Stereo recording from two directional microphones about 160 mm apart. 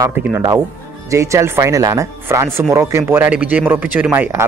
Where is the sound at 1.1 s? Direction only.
20° right (ahead or behind).